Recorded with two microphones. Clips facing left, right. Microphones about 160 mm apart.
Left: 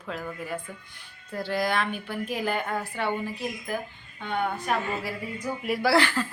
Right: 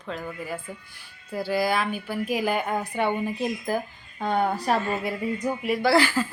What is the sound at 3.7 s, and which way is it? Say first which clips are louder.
A woman's voice: right 4 dB; 35° right (ahead or behind).